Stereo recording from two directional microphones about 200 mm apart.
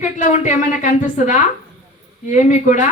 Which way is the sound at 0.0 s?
35° left (ahead or behind).